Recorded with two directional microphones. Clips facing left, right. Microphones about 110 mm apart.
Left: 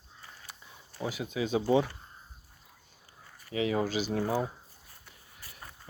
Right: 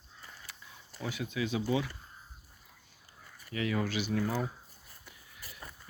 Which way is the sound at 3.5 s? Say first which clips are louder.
Left 4 dB; 20° left (ahead or behind).